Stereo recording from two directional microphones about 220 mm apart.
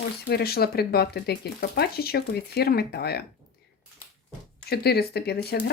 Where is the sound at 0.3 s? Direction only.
45° left (ahead or behind).